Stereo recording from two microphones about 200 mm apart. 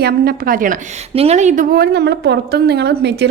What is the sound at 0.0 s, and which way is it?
A woman's voice, 45° right (ahead or behind).